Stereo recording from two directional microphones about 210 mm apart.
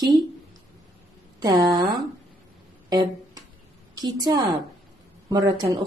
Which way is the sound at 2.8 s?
20° right (ahead or behind).